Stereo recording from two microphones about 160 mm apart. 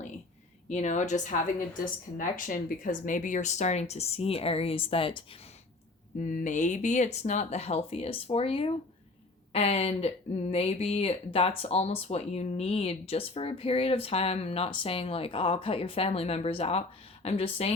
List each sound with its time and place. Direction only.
0.7 s speech: 45° left (ahead or behind)
6.1 s speech: 50° left (ahead or behind)